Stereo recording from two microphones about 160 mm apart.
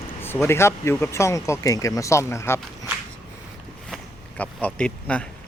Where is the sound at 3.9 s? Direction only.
10° left (ahead or behind).